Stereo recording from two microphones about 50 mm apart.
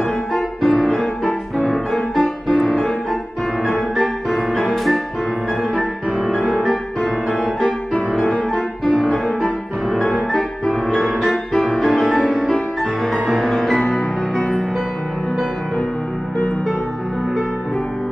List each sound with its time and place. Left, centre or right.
0.3 s music: centre
12.4 s music: centre
13.1 s music: centre
13.8 s music: centre